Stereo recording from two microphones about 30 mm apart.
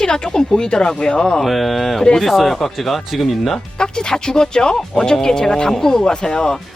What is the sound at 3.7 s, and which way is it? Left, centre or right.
A woman's voice, left.